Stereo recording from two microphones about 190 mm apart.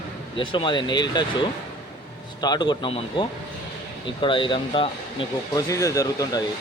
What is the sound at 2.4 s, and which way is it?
Speech, 20° left (ahead or behind).